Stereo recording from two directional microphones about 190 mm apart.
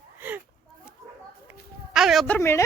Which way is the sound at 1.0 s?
15° right (ahead or behind).